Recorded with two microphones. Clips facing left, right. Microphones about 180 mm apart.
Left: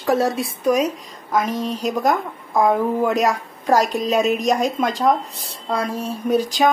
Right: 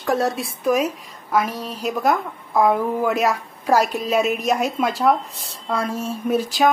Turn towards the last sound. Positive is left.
turn(degrees=0)  # may be behind; listen again after turning